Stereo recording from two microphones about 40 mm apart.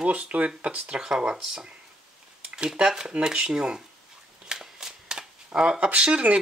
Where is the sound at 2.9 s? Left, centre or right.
Centre.